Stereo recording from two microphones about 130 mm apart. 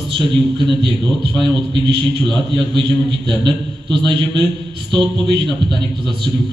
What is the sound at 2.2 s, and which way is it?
A man's voice, 40° right (ahead or behind).